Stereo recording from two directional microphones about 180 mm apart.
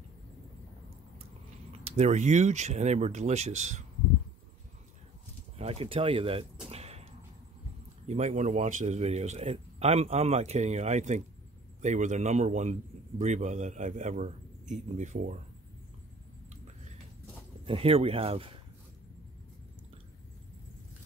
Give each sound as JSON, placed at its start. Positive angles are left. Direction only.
{"t": 1.9, "sound": "a man's voice", "side_deg": -40}
{"t": 5.6, "sound": "a man's voice", "side_deg": -35}
{"t": 6.7, "sound": "a sound", "side_deg": -35}
{"t": 8.1, "sound": "a man's voice", "side_deg": -40}
{"t": 17.6, "sound": "a man's voice", "side_deg": -30}